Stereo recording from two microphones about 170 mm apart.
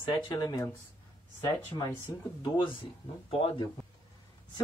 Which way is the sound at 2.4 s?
30° left (ahead or behind).